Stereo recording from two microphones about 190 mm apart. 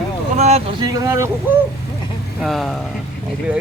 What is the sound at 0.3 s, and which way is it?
Vehicle, 35° right (ahead or behind).